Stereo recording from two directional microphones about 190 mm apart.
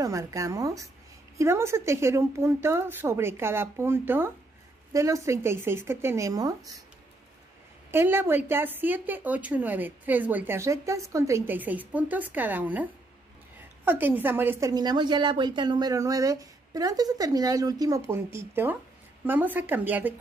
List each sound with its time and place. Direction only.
0.0 s a woman's voice: 15° right (ahead or behind)
7.9 s a woman's voice: 10° right (ahead or behind)
13.8 s a woman's voice: 10° right (ahead or behind)